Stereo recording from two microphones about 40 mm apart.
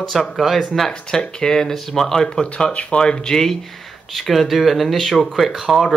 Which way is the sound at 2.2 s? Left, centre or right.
Left.